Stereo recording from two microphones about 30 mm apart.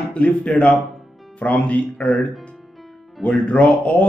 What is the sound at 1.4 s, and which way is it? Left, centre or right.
Speech, left.